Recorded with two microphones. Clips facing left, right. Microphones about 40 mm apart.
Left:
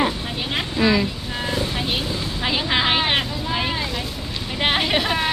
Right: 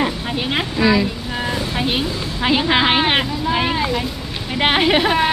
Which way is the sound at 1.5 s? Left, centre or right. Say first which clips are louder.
Right 2 dB; centre.